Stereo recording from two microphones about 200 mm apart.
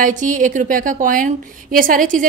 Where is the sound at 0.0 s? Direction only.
40° right (ahead or behind).